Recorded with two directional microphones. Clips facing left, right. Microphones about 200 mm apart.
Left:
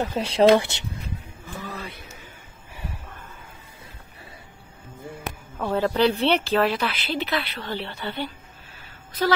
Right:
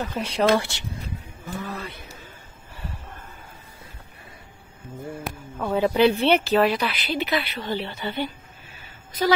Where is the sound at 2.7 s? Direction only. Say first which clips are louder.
Left 1 dB; 15° left (ahead or behind).